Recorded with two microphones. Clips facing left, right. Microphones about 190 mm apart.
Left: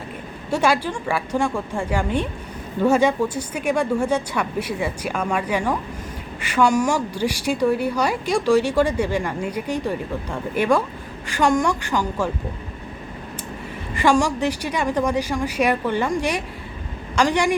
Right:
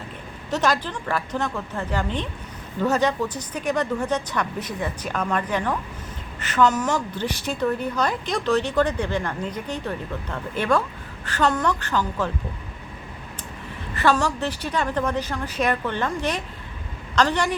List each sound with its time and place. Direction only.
0.5 s a woman's voice: 10° left (ahead or behind)
13.9 s a woman's voice: 15° left (ahead or behind)